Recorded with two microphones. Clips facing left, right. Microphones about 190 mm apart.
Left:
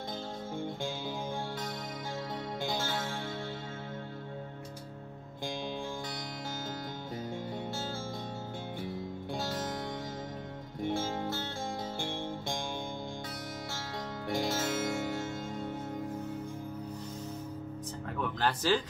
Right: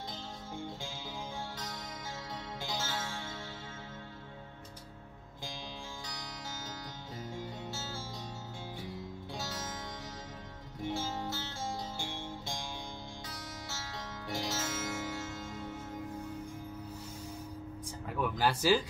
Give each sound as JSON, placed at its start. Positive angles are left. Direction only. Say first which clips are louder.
{"t": 2.6, "sound": "music", "louder": "left 4 dB", "side_deg": 55}
{"t": 9.3, "sound": "music", "louder": "left 7 dB", "side_deg": 55}
{"t": 10.8, "sound": "music", "louder": "left 4 dB", "side_deg": 55}
{"t": 13.7, "sound": "music", "louder": "left 4 dB", "side_deg": 55}
{"t": 18.2, "sound": "music", "louder": "right 1 dB", "side_deg": -10}